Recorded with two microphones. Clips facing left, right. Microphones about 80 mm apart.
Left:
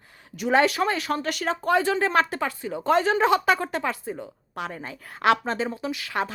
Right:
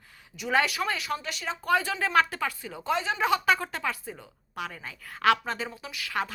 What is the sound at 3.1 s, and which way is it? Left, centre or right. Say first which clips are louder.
A woman's voice: left 4 dB; left.